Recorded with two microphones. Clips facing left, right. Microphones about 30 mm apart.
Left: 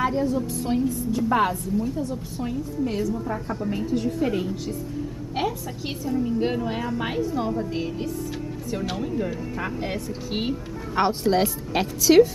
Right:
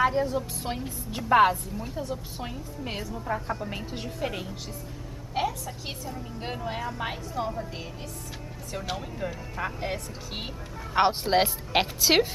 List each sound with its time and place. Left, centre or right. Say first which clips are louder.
0.0 s a woman's voice: left 1 dB; centre
4.3 s a woman's voice: left 9 dB; centre
5.4 s a woman's voice: left 2 dB; centre
11.0 s a woman's voice: left 1 dB; right